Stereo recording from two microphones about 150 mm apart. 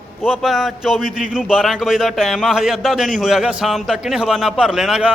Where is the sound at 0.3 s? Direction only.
Centre (ahead or behind).